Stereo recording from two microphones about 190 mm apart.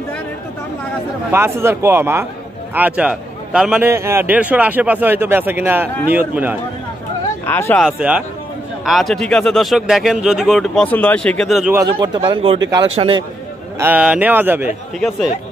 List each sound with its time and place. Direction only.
1.3 s a man's voice: 15° right (ahead or behind)
7.4 s speech: 10° left (ahead or behind)
7.8 s speech: 5° right (ahead or behind)
11.9 s speech: 25° right (ahead or behind)
12.9 s speech: 30° right (ahead or behind)
13.7 s a man's voice: 10° right (ahead or behind)